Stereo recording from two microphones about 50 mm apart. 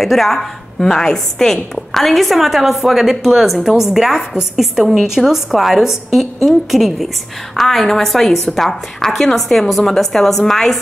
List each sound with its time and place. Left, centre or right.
0.0 s a woman's voice: centre